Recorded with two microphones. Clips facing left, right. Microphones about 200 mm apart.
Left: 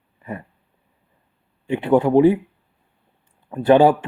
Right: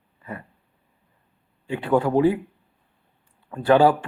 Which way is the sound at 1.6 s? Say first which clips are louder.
Left 4 dB; 20° left (ahead or behind).